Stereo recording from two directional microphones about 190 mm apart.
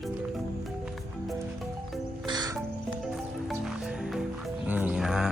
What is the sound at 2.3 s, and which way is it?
Music, 20° right (ahead or behind).